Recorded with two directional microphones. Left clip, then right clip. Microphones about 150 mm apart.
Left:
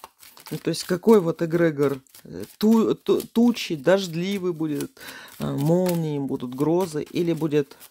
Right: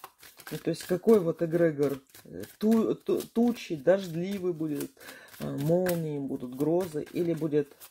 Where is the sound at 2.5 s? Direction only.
90° left; by 7.6 s 65° left (ahead or behind).